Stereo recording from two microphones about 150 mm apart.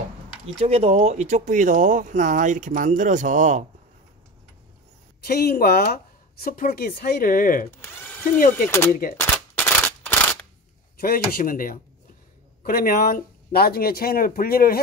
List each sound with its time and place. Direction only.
0.6 s speech: 40° right (ahead or behind)
5.2 s speech: 90° left
6.4 s speech: 75° left (ahead or behind)
8.6 s speech: 15° left (ahead or behind)
9.1 s a sound: 15° left (ahead or behind)
11.0 s speech: 80° left